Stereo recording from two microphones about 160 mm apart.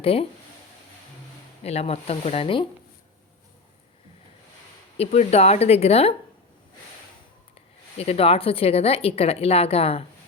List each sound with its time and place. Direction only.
0.0 s a woman's voice: 35° left (ahead or behind)
1.6 s a woman's voice: 40° left (ahead or behind)
4.9 s a woman's voice: 40° left (ahead or behind)
7.9 s a woman's voice: 40° left (ahead or behind)